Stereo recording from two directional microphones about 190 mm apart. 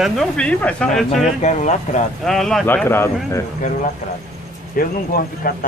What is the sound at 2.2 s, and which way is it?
Speech, centre (ahead or behind).